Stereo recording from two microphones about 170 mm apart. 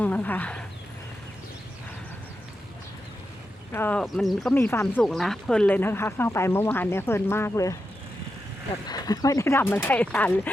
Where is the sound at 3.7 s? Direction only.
10° left (ahead or behind).